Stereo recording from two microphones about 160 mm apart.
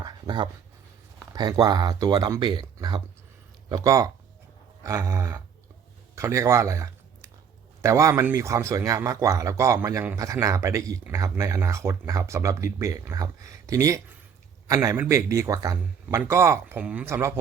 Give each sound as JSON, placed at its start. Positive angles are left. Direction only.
{"t": 0.0, "sound": "dog", "side_deg": -30}
{"t": 1.2, "sound": "speech", "side_deg": -25}